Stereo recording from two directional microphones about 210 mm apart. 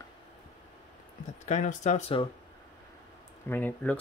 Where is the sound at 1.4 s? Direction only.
35° left (ahead or behind).